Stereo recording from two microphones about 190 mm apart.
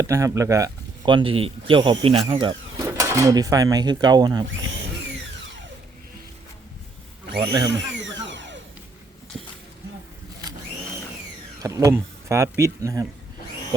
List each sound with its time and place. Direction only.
0.0 s speech: 15° right (ahead or behind)
2.8 s speech: 15° right (ahead or behind)
7.3 s speech: 25° right (ahead or behind)
7.7 s a sound: 75° right (ahead or behind)
11.6 s speech: 15° right (ahead or behind)